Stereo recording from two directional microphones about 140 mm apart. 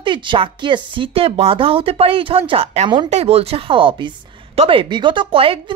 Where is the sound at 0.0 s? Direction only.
35° right (ahead or behind).